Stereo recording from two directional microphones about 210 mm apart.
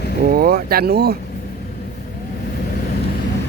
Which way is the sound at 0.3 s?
45° right (ahead or behind).